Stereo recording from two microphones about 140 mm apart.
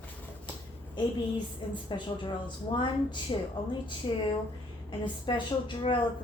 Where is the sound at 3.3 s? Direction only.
35° left (ahead or behind).